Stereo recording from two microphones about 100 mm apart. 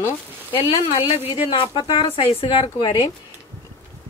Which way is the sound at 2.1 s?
75° left (ahead or behind).